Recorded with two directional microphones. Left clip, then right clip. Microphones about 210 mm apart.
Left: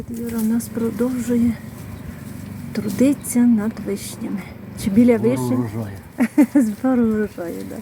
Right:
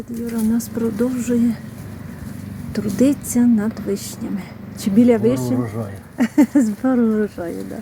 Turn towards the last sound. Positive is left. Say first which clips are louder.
# right 1 dB
turn(degrees=0)  # may be behind; listen again after turning